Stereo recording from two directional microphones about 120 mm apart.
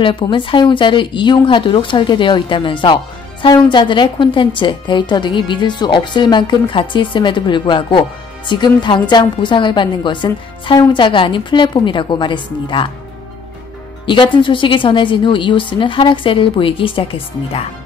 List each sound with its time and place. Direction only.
0.0 s a woman's voice: 45° left (ahead or behind)
14.0 s a woman's voice: 40° left (ahead or behind)